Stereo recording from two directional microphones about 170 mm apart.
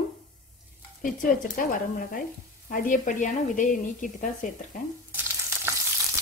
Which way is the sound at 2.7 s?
50° left (ahead or behind).